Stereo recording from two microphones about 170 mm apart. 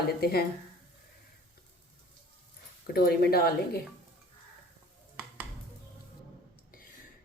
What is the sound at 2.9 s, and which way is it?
Speech, 65° left (ahead or behind).